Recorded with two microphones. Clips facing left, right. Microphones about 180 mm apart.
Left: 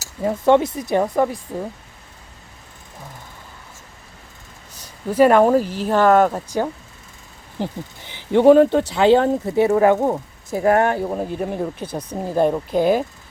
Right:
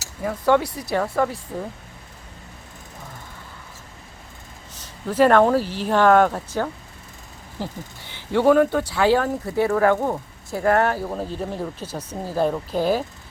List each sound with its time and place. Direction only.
0.2 s speech: 25° left (ahead or behind)
4.7 s a sound: 10° left (ahead or behind)
5.5 s speech: 45° left (ahead or behind)
5.9 s speech: 5° left (ahead or behind)